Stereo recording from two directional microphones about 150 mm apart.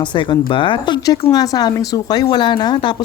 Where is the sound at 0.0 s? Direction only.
30° left (ahead or behind).